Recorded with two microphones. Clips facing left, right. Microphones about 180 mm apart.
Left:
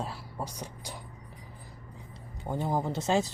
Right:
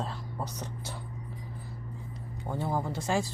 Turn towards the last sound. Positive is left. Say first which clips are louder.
# left 2 dB
turn(degrees=20)  # may be behind; listen again after turning